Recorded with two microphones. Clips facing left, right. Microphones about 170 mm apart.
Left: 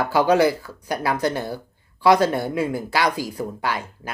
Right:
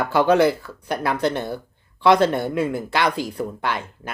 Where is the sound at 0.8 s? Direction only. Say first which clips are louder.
Even; 60° right (ahead or behind).